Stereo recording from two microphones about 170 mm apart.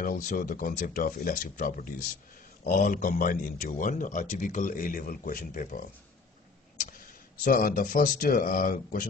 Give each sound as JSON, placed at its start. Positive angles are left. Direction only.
{"t": 0.0, "sound": "speech", "side_deg": 50}
{"t": 7.4, "sound": "speech", "side_deg": 55}